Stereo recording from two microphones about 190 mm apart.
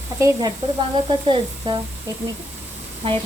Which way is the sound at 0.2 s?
15° right (ahead or behind).